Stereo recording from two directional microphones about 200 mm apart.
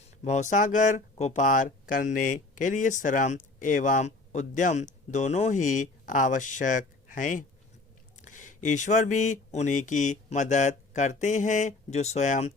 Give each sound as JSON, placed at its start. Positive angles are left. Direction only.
{"t": 0.3, "sound": "speech", "side_deg": 35}